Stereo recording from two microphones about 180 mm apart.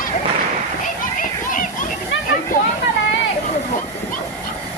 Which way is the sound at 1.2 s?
45° left (ahead or behind).